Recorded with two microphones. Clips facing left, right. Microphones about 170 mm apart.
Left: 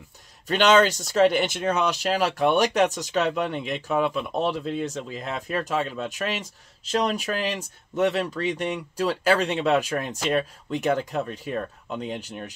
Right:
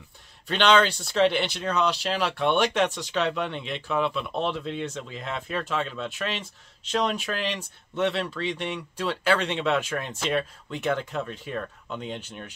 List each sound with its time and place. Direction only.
0.5 s speech: 40° left (ahead or behind)